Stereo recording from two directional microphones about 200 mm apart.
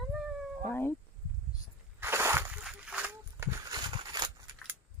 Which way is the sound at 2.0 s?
10° right (ahead or behind).